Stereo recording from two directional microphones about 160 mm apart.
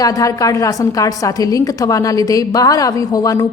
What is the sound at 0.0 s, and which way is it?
A woman's voice, 20° left (ahead or behind).